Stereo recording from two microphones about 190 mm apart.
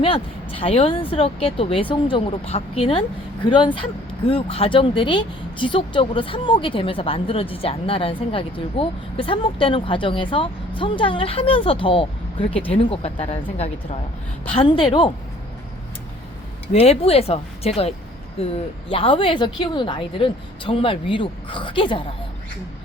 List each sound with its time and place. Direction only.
0.0 s a woman's voice: 30° left (ahead or behind)
16.7 s a woman's voice: 30° left (ahead or behind)